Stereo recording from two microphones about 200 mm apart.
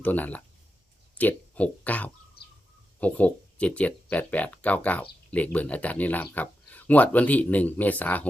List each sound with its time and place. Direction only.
0.0 s speech: 10° left (ahead or behind)